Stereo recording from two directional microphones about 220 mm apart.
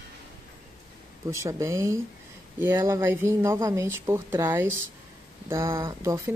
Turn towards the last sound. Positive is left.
turn(degrees=-15)  # may be behind; listen again after turning